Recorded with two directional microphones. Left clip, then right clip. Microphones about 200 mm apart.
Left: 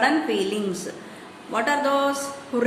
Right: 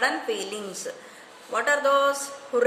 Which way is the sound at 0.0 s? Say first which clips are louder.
Left 4 dB; 25° right (ahead or behind).